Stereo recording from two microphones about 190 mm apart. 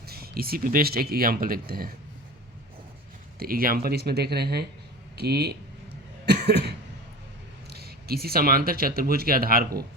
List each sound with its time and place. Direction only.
0.0 s speech: 55° right (ahead or behind)
3.3 s speech: 50° right (ahead or behind)
6.2 s cough: 60° right (ahead or behind)
7.7 s speech: 55° right (ahead or behind)